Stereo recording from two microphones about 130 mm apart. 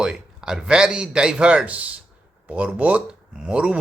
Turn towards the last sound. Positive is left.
turn(degrees=-10)  # may be behind; listen again after turning